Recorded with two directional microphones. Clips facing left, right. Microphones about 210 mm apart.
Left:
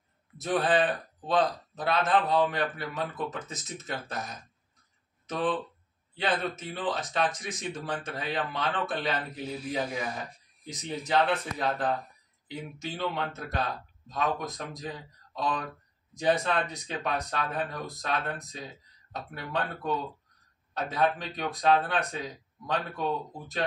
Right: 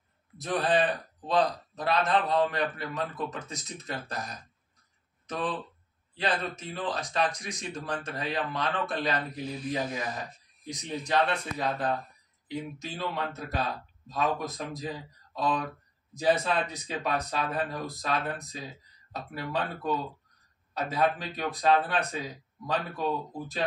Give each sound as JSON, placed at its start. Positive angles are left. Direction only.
{"t": 0.4, "sound": "speech", "side_deg": 5}
{"t": 6.1, "sound": "speech", "side_deg": 5}